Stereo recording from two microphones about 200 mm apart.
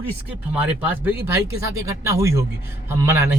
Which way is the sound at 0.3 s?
10° right (ahead or behind).